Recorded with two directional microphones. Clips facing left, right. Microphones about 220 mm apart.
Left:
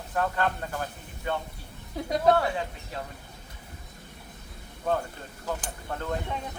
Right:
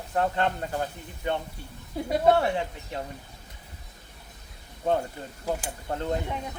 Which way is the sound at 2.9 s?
25° right (ahead or behind).